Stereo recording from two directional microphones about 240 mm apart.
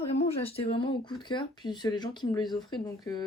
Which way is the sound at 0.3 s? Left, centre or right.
Left.